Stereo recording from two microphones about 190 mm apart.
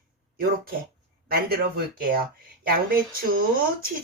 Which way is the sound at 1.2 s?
50° right (ahead or behind).